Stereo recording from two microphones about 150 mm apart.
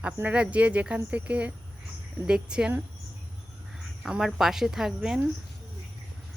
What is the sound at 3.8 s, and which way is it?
Speech, 5° right (ahead or behind).